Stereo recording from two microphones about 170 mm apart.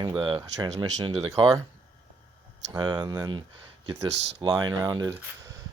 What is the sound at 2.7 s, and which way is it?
Speech, 25° right (ahead or behind).